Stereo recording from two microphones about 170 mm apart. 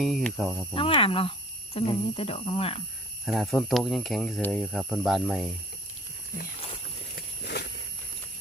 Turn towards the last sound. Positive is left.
turn(degrees=70)  # may be behind; listen again after turning